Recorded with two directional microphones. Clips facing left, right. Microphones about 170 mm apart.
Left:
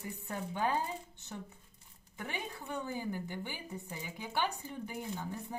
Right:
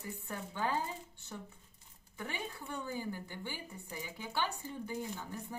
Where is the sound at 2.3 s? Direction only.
15° left (ahead or behind).